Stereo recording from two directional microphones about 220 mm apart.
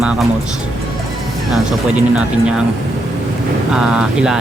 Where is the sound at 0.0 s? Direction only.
Centre (ahead or behind).